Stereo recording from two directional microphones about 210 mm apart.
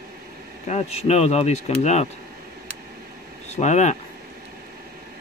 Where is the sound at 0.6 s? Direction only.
30° left (ahead or behind).